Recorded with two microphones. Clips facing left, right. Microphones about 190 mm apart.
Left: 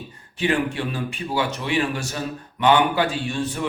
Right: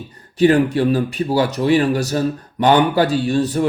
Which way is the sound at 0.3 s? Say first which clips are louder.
Right 9 dB; 40° right (ahead or behind).